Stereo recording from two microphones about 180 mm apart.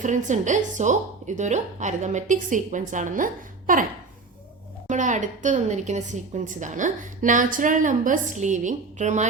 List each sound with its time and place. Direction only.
0.0 s a woman's voice: 45° right (ahead or behind)
4.9 s a woman's voice: 45° right (ahead or behind)